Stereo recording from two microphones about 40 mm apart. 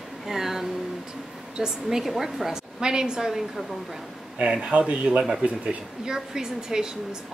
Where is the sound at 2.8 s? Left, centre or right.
Centre.